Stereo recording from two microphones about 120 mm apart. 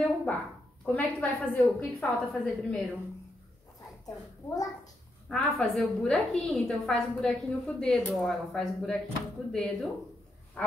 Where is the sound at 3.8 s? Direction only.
30° left (ahead or behind).